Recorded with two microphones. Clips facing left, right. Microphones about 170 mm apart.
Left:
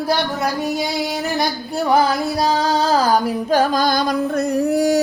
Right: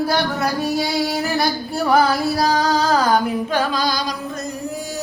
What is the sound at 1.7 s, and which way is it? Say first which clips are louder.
Music: even; 20° left (ahead or behind).